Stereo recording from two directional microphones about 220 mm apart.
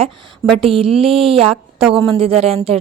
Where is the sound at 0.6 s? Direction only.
25° right (ahead or behind).